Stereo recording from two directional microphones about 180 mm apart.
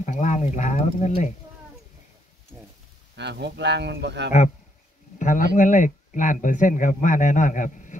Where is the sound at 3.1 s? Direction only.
70° right (ahead or behind).